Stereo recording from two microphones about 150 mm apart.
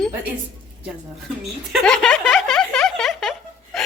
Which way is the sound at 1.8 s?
5° left (ahead or behind).